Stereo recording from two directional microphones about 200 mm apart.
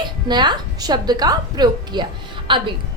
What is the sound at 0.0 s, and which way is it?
A woman's voice, 20° right (ahead or behind).